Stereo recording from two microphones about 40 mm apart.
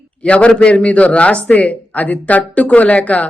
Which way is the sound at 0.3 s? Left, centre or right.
Left.